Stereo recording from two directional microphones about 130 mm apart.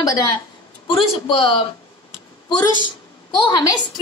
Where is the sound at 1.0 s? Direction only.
45° left (ahead or behind).